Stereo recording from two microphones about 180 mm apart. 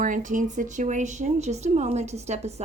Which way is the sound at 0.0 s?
45° right (ahead or behind).